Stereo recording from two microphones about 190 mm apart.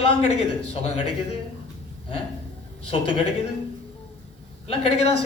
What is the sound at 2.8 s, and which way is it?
Speech, 30° left (ahead or behind).